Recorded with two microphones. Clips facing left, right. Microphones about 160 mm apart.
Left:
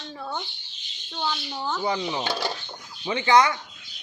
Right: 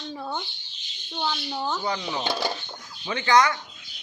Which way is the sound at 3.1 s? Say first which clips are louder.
Left 1 dB; 20° left (ahead or behind).